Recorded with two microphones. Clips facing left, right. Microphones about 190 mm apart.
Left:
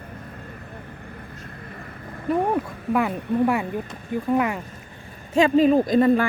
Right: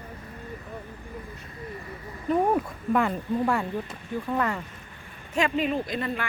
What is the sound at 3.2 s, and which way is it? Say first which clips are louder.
Speech: left 4 dB; 65° left (ahead or behind).